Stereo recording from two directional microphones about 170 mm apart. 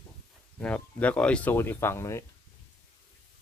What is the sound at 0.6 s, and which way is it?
Speech, 10° left (ahead or behind).